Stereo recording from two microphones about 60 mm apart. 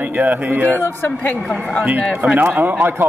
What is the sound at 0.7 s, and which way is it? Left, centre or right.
Speech, left.